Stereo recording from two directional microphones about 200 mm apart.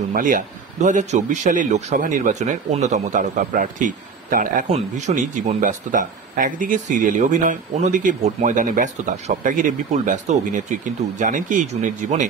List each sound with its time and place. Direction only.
0.1 s a man's voice: 40° right (ahead or behind)